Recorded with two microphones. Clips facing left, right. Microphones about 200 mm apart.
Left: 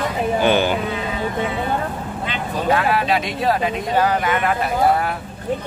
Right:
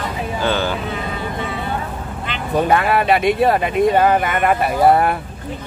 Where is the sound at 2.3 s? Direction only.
55° right (ahead or behind).